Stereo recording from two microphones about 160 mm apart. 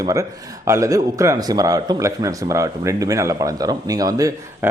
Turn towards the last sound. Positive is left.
turn(degrees=-20)  # may be behind; listen again after turning